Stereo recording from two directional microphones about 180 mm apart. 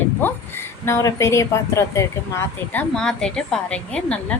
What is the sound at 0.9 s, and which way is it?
A woman's voice, 15° left (ahead or behind).